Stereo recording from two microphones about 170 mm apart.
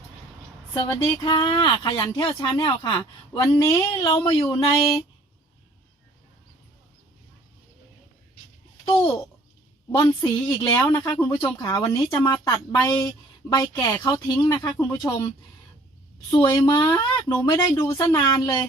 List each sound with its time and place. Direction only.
0.7 s speech: 25° left (ahead or behind)
9.9 s speech: 20° left (ahead or behind)
10.8 s speech: 10° left (ahead or behind)
16.4 s speech: 25° left (ahead or behind)